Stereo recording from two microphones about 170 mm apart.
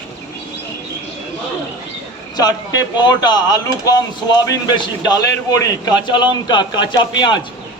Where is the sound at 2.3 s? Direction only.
20° left (ahead or behind).